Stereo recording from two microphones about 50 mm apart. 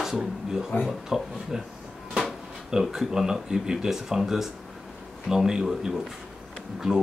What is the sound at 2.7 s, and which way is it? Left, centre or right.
Speech, centre.